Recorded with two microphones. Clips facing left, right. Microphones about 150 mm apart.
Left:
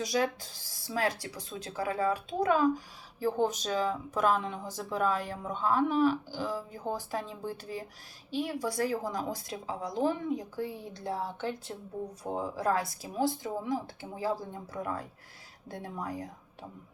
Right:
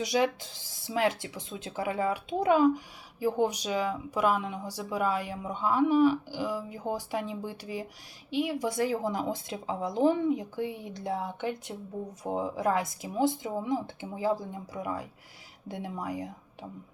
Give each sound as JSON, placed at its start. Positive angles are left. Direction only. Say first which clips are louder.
{"t": 0.0, "sound": "speech", "louder": "right 3 dB", "side_deg": -20}